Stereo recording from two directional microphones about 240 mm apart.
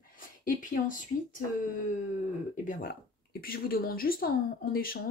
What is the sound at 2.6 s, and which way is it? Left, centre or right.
Speech, left.